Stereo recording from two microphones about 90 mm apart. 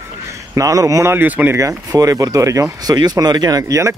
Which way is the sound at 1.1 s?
20° right (ahead or behind).